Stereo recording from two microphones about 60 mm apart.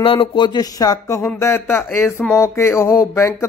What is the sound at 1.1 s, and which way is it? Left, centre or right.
Speech, left.